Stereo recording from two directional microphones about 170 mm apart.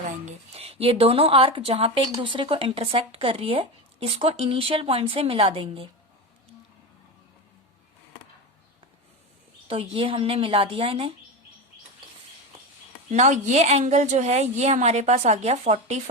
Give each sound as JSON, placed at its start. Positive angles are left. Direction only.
{"t": 0.3, "sound": "speech", "side_deg": -35}
{"t": 9.6, "sound": "speech", "side_deg": -35}
{"t": 13.1, "sound": "speech", "side_deg": -45}